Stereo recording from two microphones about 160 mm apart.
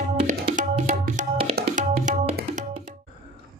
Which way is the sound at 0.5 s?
50° right (ahead or behind).